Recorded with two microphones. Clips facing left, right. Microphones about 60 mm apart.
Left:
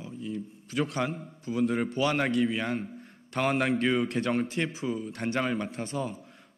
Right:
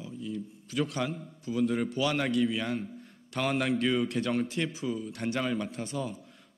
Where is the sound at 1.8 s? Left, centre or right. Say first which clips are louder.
Left 2 dB; left.